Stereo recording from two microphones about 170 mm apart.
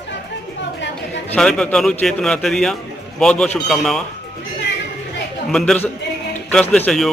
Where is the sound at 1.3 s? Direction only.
5° left (ahead or behind).